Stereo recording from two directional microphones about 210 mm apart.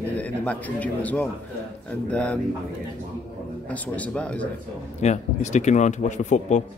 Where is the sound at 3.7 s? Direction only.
5° left (ahead or behind).